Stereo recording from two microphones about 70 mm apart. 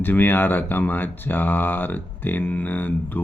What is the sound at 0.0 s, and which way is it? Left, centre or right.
Speech, left.